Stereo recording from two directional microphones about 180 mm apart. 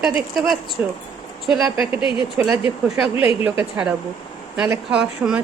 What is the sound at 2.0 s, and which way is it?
Speech, 30° left (ahead or behind).